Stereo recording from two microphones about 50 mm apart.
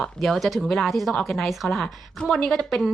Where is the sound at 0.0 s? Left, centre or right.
Centre.